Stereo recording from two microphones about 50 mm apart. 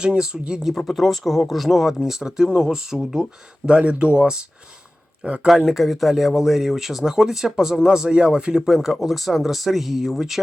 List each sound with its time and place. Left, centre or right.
0.0 s speech: centre
0.7 s speech: centre; by 5.5 s right
5.5 s speech: centre
8.6 s speech: centre